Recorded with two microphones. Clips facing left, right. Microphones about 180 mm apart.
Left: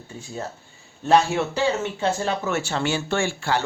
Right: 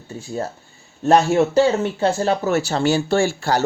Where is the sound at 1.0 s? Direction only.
45° right (ahead or behind).